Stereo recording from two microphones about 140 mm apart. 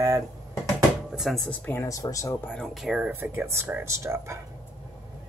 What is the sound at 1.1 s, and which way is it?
Speech, centre (ahead or behind).